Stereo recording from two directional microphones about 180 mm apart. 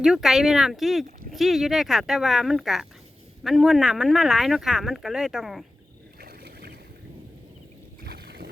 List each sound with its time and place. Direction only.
0.0 s speech: 5° right (ahead or behind)
6.1 s boat: 60° right (ahead or behind)
8.0 s rowboat: 65° right (ahead or behind)